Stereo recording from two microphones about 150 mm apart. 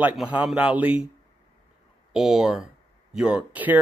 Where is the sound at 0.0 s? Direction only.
10° right (ahead or behind).